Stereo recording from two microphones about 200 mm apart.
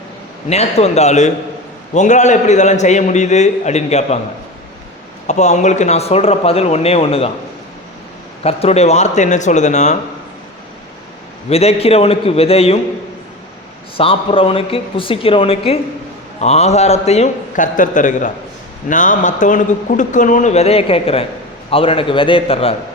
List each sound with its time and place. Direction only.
0.4 s a man's voice: 30° left (ahead or behind)
5.3 s a man's voice: 35° left (ahead or behind)
8.4 s a man's voice: 30° left (ahead or behind)
11.4 s speech: 30° left (ahead or behind)
13.9 s a man's voice: 25° left (ahead or behind)